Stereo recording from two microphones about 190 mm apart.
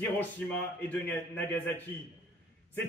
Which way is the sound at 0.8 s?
10° left (ahead or behind).